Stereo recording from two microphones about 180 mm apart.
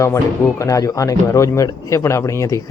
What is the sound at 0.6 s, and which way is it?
Speech, 20° left (ahead or behind).